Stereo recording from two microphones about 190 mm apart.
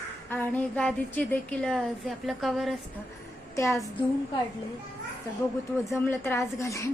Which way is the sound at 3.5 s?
15° left (ahead or behind).